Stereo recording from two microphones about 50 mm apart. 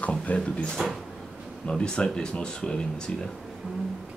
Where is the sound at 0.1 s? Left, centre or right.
Left.